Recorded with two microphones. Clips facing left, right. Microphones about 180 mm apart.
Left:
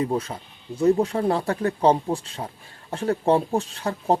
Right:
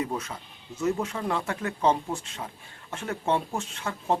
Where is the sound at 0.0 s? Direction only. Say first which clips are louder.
Left 6 dB; 30° left (ahead or behind).